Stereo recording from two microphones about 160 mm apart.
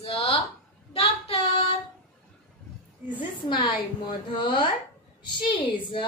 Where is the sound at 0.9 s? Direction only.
35° left (ahead or behind).